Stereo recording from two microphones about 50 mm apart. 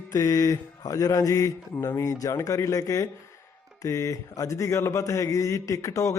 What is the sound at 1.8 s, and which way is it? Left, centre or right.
Speech, left.